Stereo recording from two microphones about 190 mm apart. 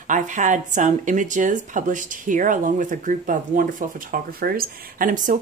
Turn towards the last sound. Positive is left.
turn(degrees=-45)  # may be behind; listen again after turning